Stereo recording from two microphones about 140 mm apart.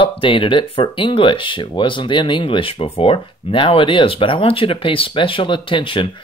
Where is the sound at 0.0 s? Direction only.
40° left (ahead or behind).